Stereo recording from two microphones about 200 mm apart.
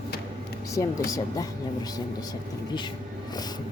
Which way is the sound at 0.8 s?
15° left (ahead or behind).